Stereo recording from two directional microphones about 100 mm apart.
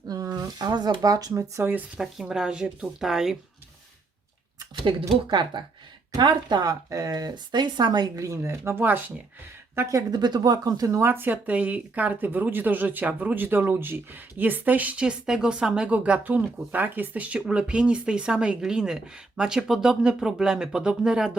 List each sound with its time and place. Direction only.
0.1 s speech: 40° right (ahead or behind); by 1.8 s 25° right (ahead or behind)
2.0 s speech: 5° right (ahead or behind)
4.7 s speech: 60° right (ahead or behind); by 9.1 s 20° right (ahead or behind)
9.7 s speech: 30° right (ahead or behind); by 21.3 s 5° right (ahead or behind)